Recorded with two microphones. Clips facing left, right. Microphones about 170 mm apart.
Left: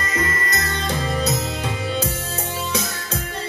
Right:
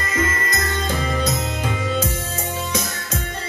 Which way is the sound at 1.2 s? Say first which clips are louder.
Even; 30° left (ahead or behind).